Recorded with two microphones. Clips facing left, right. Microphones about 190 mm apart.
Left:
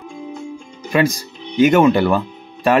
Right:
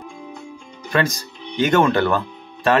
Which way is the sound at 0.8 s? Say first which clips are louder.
Left 4 dB; 10° left (ahead or behind).